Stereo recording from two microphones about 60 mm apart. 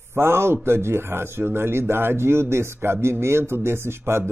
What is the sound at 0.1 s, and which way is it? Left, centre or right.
Speech, right.